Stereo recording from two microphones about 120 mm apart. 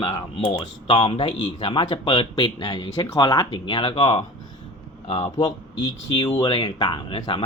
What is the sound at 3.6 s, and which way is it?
Speech, 45° left (ahead or behind).